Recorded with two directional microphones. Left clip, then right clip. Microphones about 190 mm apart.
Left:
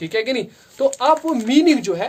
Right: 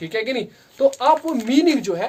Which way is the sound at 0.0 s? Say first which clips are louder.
Left 2 dB; 40° left (ahead or behind).